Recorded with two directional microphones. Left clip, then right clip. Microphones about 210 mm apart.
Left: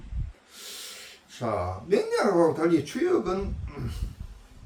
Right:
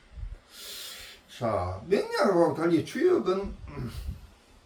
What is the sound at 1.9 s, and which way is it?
Speech, 5° right (ahead or behind).